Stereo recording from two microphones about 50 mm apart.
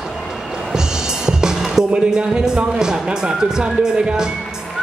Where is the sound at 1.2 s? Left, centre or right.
Centre.